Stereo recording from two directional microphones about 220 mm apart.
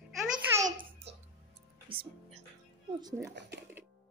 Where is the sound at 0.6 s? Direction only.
35° right (ahead or behind).